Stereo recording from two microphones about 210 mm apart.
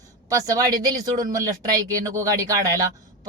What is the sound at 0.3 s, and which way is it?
Speech, 15° right (ahead or behind).